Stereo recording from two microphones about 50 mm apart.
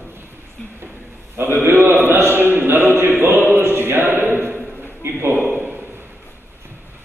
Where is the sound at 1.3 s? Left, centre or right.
Right.